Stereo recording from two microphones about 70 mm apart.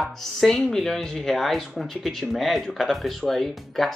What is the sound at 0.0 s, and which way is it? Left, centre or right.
Speech, centre.